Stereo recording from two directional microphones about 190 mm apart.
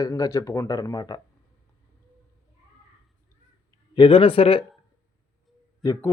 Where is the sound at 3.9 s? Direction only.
25° left (ahead or behind).